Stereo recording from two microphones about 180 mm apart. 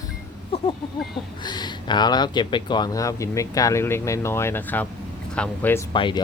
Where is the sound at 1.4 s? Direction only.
25° left (ahead or behind).